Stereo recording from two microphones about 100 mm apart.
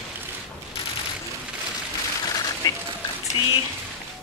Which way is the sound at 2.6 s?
40° left (ahead or behind).